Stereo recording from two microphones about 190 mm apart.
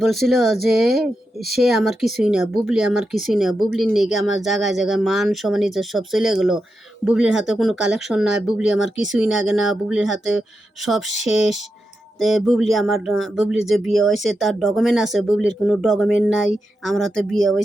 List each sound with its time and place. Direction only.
0.0 s speech: centre (ahead or behind)